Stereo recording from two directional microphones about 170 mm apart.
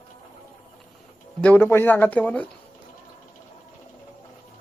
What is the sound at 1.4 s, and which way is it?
Speech, 10° left (ahead or behind).